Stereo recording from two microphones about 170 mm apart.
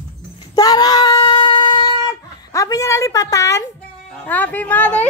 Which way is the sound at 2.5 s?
20° left (ahead or behind).